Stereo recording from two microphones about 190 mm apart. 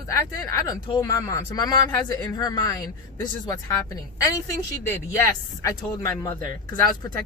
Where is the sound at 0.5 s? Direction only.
20° left (ahead or behind).